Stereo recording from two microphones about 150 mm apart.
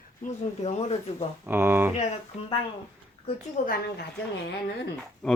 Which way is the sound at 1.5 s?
15° right (ahead or behind).